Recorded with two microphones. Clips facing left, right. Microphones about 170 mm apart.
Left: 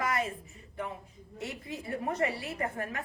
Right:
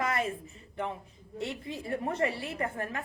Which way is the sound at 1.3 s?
30° right (ahead or behind).